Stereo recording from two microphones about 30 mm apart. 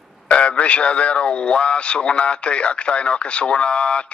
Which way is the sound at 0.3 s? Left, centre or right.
Left.